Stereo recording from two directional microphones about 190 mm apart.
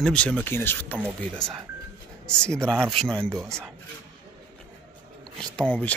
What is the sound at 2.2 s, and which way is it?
Speech, 5° left (ahead or behind).